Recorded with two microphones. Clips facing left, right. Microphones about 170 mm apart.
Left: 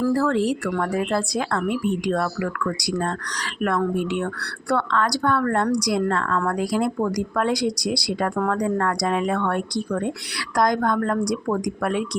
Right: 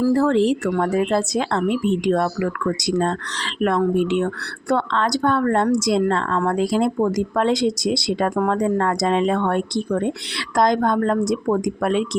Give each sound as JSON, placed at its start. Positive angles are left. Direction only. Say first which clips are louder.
{"t": 0.1, "sound": "speech", "louder": "right 4 dB", "side_deg": -20}